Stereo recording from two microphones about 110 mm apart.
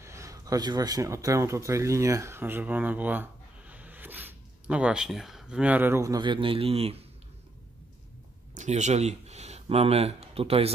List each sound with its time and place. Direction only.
0.0 s speech: 25° right (ahead or behind)
6.2 s speech: 50° right (ahead or behind); by 7.1 s 65° right (ahead or behind)
8.5 s speech: 90° right; by 10.7 s 65° right (ahead or behind)